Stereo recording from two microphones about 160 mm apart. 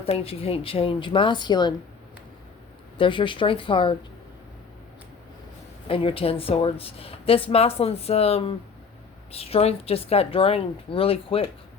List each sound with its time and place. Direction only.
0.0 s speech: 35° left (ahead or behind)
3.0 s speech: 30° left (ahead or behind)
5.9 s speech: 35° left (ahead or behind)